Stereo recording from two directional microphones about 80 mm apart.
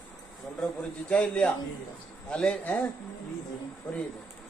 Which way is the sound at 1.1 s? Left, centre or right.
Centre.